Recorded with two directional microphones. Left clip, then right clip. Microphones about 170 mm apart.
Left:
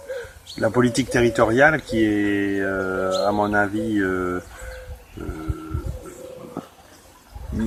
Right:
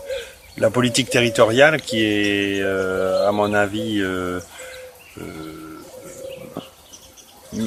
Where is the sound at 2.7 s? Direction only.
35° right (ahead or behind).